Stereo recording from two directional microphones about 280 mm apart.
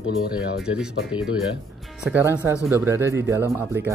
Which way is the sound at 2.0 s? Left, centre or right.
Centre.